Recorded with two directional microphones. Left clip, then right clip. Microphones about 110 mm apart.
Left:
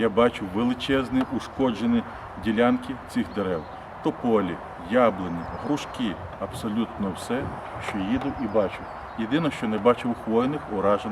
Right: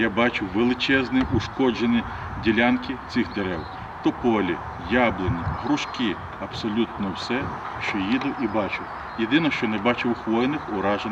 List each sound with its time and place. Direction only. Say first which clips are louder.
0.0 s speech: left 1 dB; 35° left (ahead or behind)